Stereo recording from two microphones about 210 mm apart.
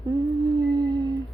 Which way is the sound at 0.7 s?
20° right (ahead or behind).